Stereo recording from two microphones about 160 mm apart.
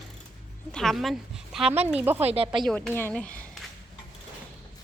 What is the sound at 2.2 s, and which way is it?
Speech, 40° right (ahead or behind).